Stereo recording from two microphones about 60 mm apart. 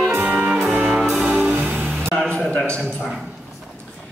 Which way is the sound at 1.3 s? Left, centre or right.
Right.